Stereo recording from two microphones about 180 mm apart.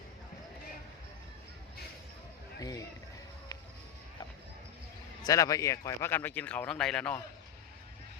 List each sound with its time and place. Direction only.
2.6 s speech: 20° left (ahead or behind)
5.2 s speech: 20° left (ahead or behind)